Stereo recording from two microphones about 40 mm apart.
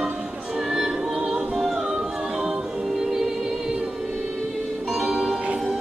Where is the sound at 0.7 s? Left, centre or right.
Centre.